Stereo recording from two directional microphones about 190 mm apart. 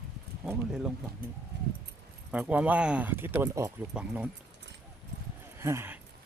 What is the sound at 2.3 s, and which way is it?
Speech, 5° right (ahead or behind).